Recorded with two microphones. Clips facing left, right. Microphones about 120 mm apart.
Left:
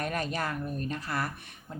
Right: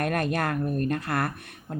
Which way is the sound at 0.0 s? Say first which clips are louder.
Right 6 dB; 55° right (ahead or behind).